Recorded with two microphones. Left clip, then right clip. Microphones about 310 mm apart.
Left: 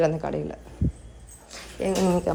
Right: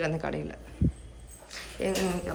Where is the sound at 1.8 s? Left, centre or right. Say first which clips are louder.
Left 4 dB; centre.